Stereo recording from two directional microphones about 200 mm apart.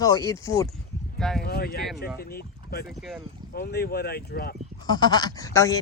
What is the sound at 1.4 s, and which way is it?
Speech, 50° left (ahead or behind).